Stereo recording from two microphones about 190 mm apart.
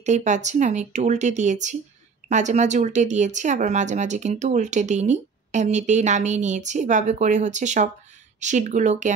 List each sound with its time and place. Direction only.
0.0 s speech: 40° right (ahead or behind)